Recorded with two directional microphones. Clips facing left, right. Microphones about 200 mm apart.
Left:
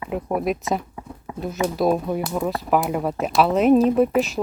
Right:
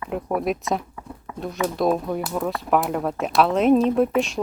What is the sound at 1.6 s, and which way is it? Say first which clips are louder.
Speech: left 1 dB; centre (ahead or behind).